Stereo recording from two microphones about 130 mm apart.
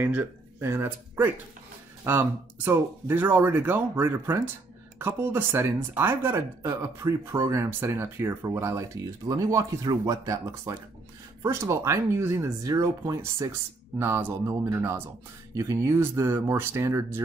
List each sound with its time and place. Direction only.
0.0 s speech: 15° right (ahead or behind)